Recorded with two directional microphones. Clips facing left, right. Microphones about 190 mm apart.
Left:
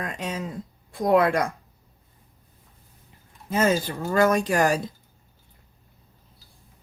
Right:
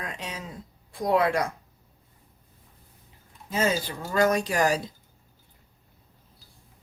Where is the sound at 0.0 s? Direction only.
45° left (ahead or behind).